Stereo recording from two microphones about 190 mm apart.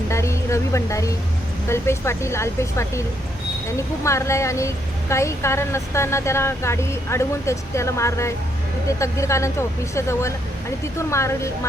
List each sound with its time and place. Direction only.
0.1 s a woman's voice: 15° left (ahead or behind)